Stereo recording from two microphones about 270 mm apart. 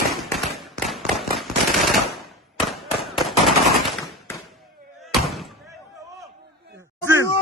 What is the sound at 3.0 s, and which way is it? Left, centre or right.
Machine gun, centre.